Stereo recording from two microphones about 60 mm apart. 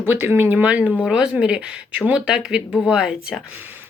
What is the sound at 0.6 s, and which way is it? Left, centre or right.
Speech, right.